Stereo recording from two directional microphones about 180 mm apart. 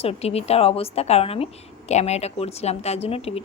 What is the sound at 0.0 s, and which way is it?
A woman's voice, 35° left (ahead or behind).